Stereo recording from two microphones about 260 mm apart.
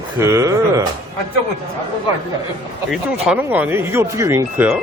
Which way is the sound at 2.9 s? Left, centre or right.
Centre.